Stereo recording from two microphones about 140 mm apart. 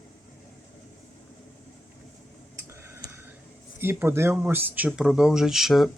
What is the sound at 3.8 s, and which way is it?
Speech, 15° right (ahead or behind).